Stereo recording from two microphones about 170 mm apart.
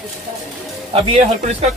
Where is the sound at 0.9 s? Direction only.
35° right (ahead or behind).